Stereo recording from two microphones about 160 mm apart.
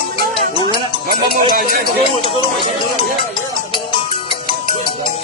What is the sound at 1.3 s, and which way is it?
Speech, 65° right (ahead or behind).